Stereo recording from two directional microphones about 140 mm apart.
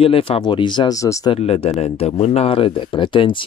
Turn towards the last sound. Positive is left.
turn(degrees=35)  # may be behind; listen again after turning